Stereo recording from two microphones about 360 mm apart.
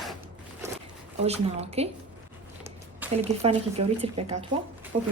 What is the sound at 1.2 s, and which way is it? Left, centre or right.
Speech, centre.